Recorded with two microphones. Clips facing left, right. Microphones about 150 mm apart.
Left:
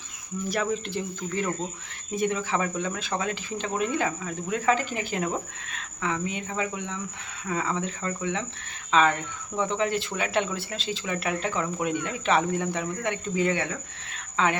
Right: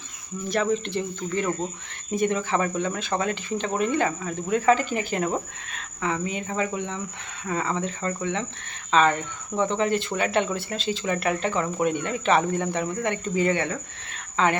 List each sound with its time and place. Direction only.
0.4 s speech: 10° left (ahead or behind)
2.1 s speech: centre (ahead or behind)